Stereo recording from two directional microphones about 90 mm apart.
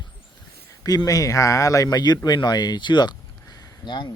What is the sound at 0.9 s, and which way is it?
Speech, 45° left (ahead or behind).